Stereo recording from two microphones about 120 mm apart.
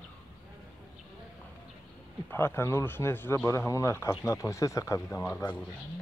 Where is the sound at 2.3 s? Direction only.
20° left (ahead or behind).